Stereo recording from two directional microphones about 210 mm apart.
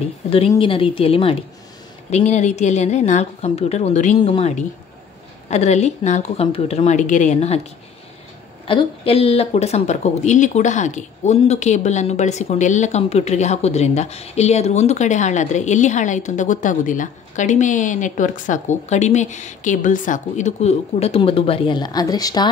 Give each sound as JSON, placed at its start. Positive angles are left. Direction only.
{"t": 0.5, "sound": "a woman's voice", "side_deg": 25}
{"t": 8.6, "sound": "speech", "side_deg": 25}